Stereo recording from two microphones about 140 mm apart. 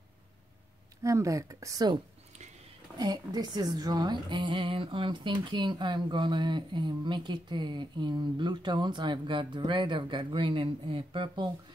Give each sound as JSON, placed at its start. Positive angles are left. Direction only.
{"t": 1.0, "sound": "speech", "side_deg": -20}
{"t": 3.0, "sound": "a woman's voice", "side_deg": -30}